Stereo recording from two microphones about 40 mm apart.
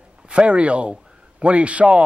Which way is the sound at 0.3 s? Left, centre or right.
Right.